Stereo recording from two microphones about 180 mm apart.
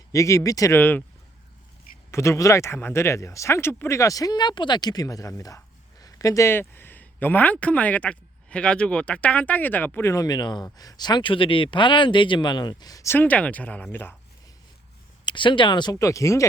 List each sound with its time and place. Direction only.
0.1 s speech: 15° left (ahead or behind)
2.0 s speech: 15° left (ahead or behind)
15.2 s speech: 25° left (ahead or behind)